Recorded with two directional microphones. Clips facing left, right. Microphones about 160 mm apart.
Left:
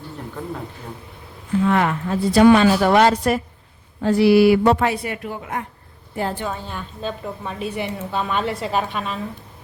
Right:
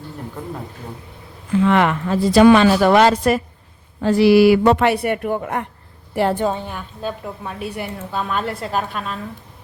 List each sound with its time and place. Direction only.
1.6 s a woman's voice: 90° right; by 5.6 s 55° right (ahead or behind)
6.5 s a woman's voice: 15° right (ahead or behind); by 9.2 s centre (ahead or behind)